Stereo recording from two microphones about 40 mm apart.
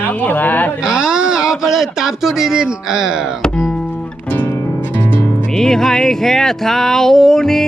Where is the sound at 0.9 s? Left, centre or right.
Right.